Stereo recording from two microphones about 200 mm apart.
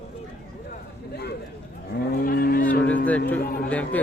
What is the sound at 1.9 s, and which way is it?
Cattle, 45° left (ahead or behind).